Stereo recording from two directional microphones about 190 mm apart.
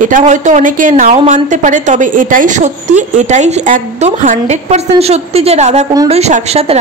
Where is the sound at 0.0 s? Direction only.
40° right (ahead or behind).